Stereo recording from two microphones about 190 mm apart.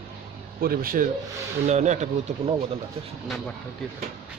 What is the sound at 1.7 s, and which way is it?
Speech, 40° right (ahead or behind).